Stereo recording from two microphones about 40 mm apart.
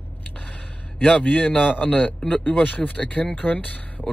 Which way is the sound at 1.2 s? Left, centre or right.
Left.